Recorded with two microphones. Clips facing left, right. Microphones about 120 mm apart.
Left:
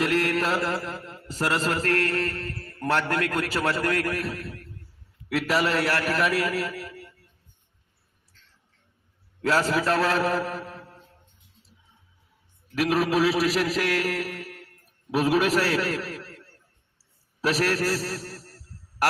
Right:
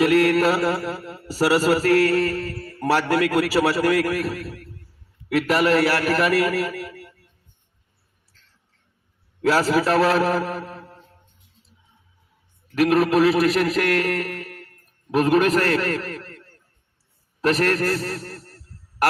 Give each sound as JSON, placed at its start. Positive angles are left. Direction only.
{"t": 0.3, "sound": "mantra", "side_deg": -5}
{"t": 3.7, "sound": "a man's voice", "side_deg": -5}
{"t": 9.4, "sound": "a man's voice", "side_deg": -5}
{"t": 12.7, "sound": "a man's voice", "side_deg": 0}